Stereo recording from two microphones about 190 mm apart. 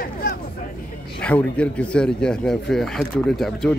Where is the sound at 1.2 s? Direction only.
5° left (ahead or behind).